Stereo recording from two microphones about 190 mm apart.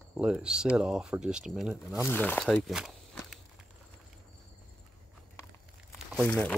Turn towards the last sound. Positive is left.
turn(degrees=5)  # may be behind; listen again after turning